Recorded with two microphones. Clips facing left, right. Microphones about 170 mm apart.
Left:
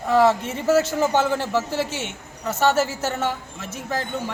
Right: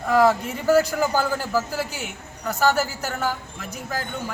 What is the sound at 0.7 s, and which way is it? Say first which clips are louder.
A man's voice: even; 25° left (ahead or behind).